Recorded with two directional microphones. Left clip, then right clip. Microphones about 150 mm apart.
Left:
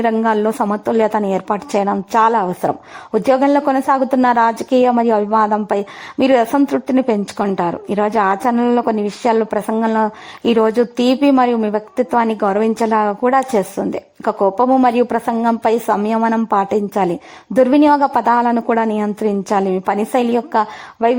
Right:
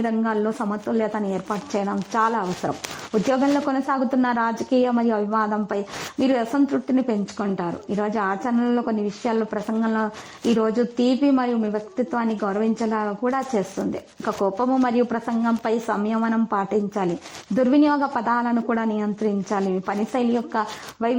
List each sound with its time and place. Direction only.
0.0 s speech: 30° left (ahead or behind)